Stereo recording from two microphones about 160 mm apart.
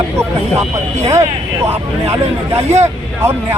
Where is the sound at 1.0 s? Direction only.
20° right (ahead or behind).